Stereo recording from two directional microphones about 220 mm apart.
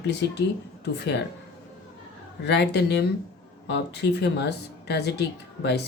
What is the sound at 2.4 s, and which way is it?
Speech, 50° left (ahead or behind).